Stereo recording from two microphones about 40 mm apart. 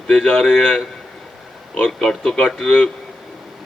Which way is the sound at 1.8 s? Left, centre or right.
Centre.